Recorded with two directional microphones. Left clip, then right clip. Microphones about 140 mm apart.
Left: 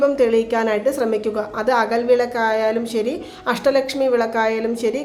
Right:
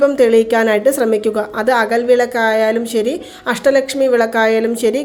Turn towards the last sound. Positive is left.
turn(degrees=-40)  # may be behind; listen again after turning